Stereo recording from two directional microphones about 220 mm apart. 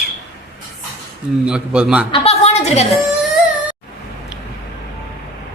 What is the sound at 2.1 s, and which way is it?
Speech, 30° left (ahead or behind).